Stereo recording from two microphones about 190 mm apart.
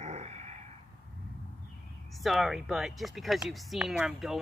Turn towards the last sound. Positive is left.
turn(degrees=-5)  # may be behind; listen again after turning